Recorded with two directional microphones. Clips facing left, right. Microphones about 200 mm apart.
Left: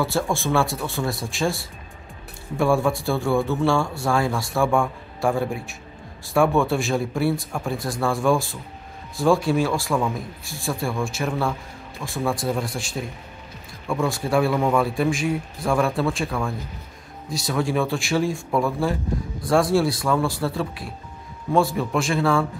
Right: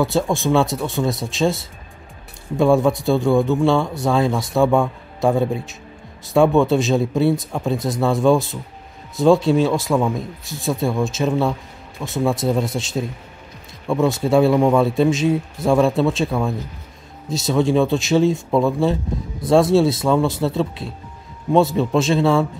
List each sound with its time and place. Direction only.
0.0 s speech: 20° right (ahead or behind)